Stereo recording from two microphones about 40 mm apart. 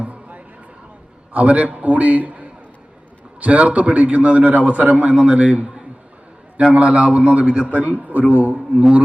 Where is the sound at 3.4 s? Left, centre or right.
Right.